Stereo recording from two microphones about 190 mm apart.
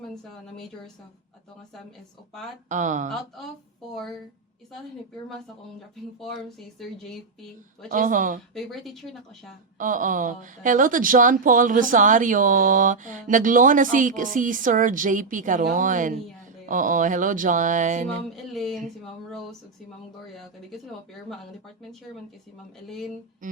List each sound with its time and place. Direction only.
2.6 s speech: 40° right (ahead or behind)
3.1 s speech: centre (ahead or behind)
6.1 s speech: centre (ahead or behind)
7.9 s speech: 45° right (ahead or behind)
8.5 s speech: centre (ahead or behind)
9.7 s speech: 45° right (ahead or behind)
18.5 s speech: centre (ahead or behind)
23.4 s music: 45° right (ahead or behind)